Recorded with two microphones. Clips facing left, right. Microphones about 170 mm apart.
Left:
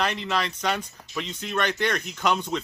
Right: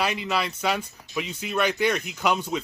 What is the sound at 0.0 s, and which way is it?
Speech, 5° right (ahead or behind).